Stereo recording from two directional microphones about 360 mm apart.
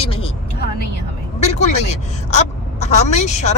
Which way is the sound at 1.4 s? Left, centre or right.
Centre.